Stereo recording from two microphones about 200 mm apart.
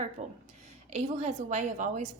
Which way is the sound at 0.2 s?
30° right (ahead or behind).